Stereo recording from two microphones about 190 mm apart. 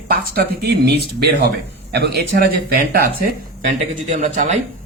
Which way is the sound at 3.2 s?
40° right (ahead or behind).